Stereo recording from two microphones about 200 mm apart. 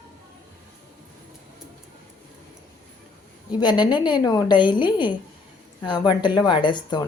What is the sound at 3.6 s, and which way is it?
A woman's voice, 20° left (ahead or behind).